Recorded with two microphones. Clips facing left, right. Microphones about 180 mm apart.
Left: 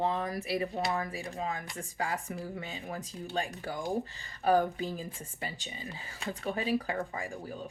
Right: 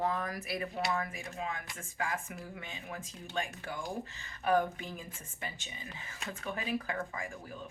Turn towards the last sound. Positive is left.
turn(degrees=35)  # may be behind; listen again after turning